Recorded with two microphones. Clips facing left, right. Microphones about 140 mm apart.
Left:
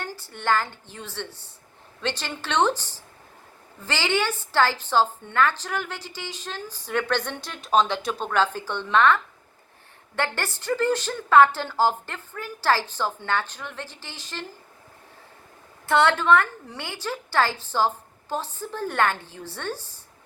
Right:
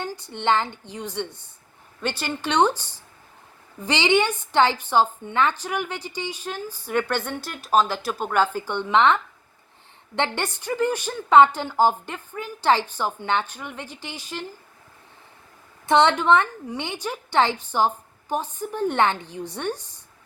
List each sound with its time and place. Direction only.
0.0 s a woman's voice: 15° right (ahead or behind)
15.9 s a woman's voice: 20° right (ahead or behind)